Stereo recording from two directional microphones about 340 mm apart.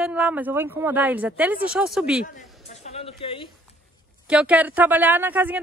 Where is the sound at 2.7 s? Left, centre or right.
Centre.